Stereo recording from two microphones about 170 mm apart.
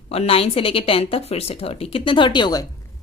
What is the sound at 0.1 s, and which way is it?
A woman's voice, 35° left (ahead or behind).